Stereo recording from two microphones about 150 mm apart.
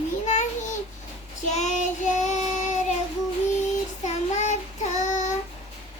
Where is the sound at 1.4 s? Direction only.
50° left (ahead or behind).